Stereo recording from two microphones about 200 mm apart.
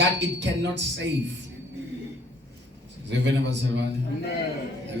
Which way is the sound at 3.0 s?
60° right (ahead or behind).